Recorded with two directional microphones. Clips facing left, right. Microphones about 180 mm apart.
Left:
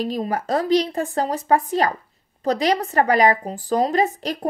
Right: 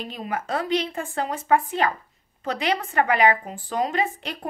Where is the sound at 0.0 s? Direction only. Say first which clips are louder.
Left 7 dB; 35° left (ahead or behind).